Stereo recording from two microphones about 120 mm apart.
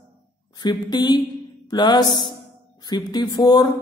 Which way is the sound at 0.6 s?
35° left (ahead or behind).